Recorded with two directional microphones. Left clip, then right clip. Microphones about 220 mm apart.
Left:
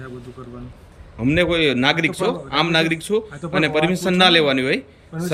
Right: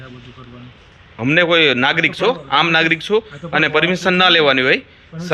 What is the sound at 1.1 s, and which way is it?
A man's voice, 10° left (ahead or behind).